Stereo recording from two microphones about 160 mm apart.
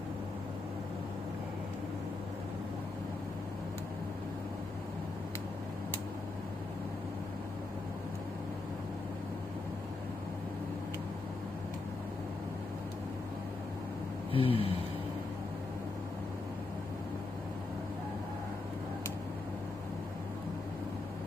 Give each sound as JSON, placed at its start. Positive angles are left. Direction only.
{"t": 14.3, "sound": "gasp", "side_deg": 35}